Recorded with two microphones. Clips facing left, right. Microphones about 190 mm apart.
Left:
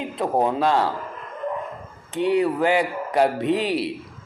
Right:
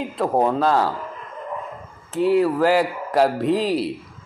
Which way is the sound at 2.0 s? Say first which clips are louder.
Right 2 dB; centre (ahead or behind).